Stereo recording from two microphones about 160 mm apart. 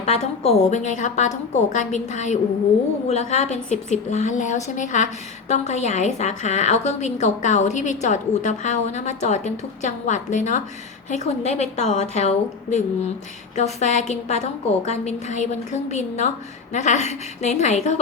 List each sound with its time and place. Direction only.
0.0 s a woman's voice: 40° left (ahead or behind)